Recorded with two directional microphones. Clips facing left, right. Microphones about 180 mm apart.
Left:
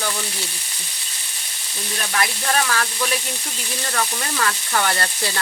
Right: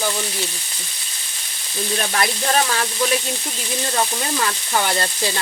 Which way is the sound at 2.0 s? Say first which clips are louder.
Right 1 dB; 30° right (ahead or behind).